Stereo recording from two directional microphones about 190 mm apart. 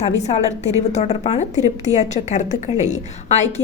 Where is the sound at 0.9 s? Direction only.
35° left (ahead or behind).